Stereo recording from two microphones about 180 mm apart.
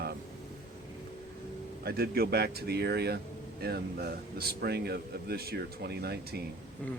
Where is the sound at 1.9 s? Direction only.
60° right (ahead or behind).